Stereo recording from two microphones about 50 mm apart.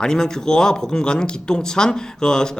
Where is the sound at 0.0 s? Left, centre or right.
Centre.